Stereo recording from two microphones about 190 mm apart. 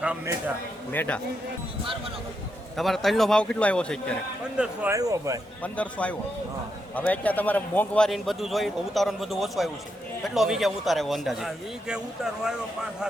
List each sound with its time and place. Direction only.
0.0 s speech: 5° right (ahead or behind)
0.9 s a man's voice: 10° left (ahead or behind)
2.7 s a man's voice: centre (ahead or behind)
4.5 s speech: 5° right (ahead or behind)
4.9 s speech: 15° right (ahead or behind)
5.6 s a man's voice: 5° left (ahead or behind)